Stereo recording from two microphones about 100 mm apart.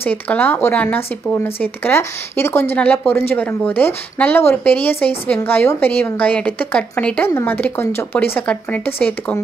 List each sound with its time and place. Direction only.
0.0 s speech: 20° left (ahead or behind)